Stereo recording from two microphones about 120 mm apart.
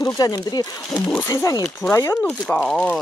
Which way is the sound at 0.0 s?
35° left (ahead or behind).